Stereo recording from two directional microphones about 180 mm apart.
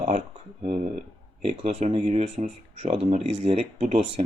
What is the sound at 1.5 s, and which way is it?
Speech, 35° right (ahead or behind).